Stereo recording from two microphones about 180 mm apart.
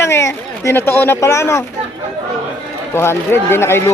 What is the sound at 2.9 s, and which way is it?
Speech, 15° left (ahead or behind).